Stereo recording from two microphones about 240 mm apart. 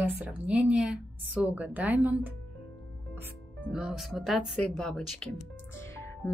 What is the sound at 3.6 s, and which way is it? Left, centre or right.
Speech, centre.